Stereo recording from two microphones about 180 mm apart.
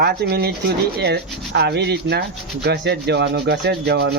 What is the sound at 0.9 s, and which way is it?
Rub, 65° right (ahead or behind).